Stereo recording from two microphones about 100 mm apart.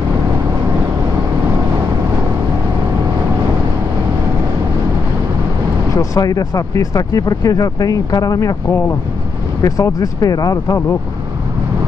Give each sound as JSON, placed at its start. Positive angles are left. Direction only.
{"t": 5.9, "sound": "speech", "side_deg": 35}